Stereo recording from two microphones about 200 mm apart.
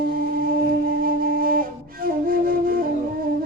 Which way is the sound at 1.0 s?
45° right (ahead or behind).